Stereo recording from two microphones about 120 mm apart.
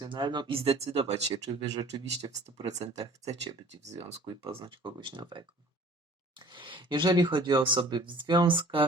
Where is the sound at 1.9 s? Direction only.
40° right (ahead or behind).